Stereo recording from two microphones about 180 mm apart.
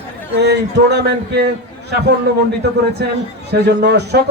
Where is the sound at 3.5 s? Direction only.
65° right (ahead or behind).